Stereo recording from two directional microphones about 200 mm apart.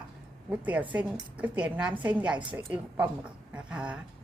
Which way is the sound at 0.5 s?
5° right (ahead or behind).